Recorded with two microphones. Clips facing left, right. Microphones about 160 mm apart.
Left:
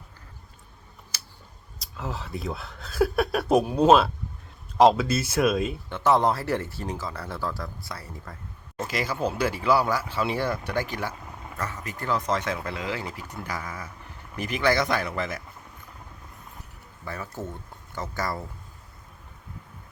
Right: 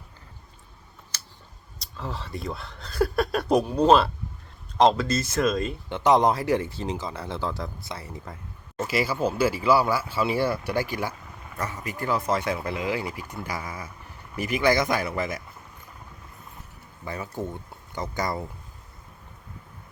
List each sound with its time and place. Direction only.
1.8 s speech: 5° left (ahead or behind)
5.9 s speech: 15° right (ahead or behind)
8.8 s speech: 5° right (ahead or behind)
17.1 s speech: 15° right (ahead or behind)